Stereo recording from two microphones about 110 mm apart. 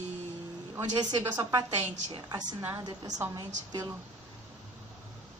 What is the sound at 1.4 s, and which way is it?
Speech, 35° right (ahead or behind).